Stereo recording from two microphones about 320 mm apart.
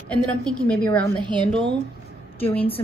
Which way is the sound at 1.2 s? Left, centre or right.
Centre.